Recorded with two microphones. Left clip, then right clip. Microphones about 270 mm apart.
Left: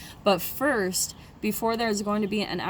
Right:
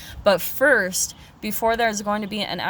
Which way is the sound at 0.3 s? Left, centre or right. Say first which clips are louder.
Right 7 dB; right.